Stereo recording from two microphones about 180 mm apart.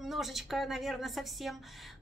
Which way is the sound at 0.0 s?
Centre (ahead or behind).